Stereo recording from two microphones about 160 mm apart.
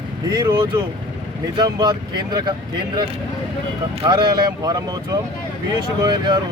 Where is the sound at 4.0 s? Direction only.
25° right (ahead or behind).